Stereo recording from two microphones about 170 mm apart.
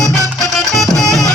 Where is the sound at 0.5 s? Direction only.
Centre (ahead or behind).